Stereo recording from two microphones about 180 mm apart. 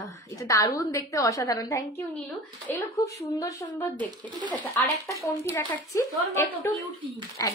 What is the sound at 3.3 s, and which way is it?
A woman's voice, 20° left (ahead or behind).